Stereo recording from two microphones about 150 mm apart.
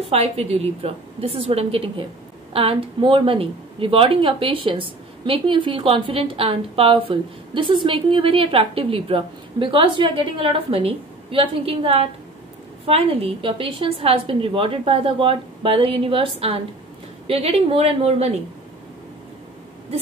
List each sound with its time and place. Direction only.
0.1 s a woman's voice: 45° right (ahead or behind)